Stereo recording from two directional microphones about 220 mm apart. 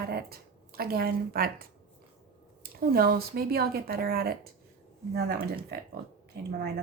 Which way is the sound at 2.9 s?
45° right (ahead or behind).